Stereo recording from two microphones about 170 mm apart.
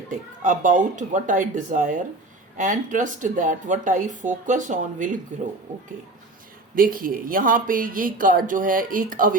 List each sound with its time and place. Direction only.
0.1 s speech: 50° right (ahead or behind)